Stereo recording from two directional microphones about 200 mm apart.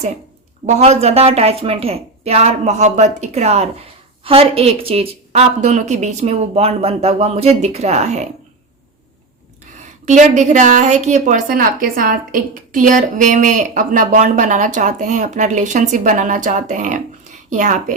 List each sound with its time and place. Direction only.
0.6 s a woman's voice: 30° right (ahead or behind)
9.8 s a woman's voice: 35° right (ahead or behind)